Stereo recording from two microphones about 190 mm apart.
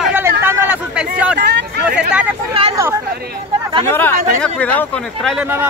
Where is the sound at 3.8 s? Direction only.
10° left (ahead or behind).